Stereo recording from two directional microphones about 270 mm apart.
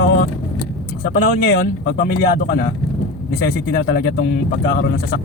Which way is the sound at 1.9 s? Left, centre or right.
Left.